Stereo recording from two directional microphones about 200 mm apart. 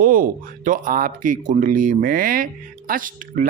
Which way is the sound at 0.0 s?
45° right (ahead or behind).